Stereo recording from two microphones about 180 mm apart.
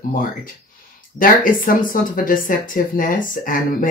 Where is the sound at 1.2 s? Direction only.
50° left (ahead or behind).